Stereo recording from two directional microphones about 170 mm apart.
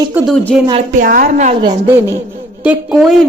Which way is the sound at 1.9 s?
15° right (ahead or behind).